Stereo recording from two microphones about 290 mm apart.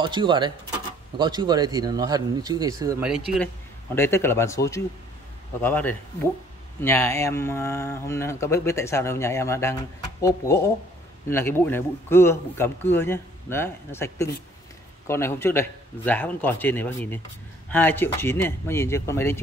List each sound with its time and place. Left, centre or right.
0.0 s speech: centre
3.9 s speech: centre